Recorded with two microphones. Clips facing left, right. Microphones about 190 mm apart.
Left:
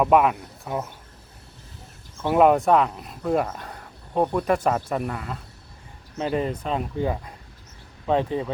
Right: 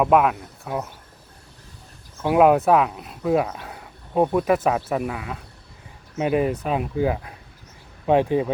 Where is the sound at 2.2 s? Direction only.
5° right (ahead or behind).